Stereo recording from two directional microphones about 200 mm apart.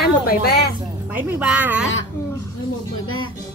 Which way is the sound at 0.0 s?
50° left (ahead or behind).